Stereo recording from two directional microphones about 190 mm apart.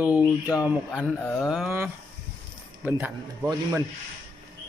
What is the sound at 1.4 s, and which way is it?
A man's voice, 5° right (ahead or behind).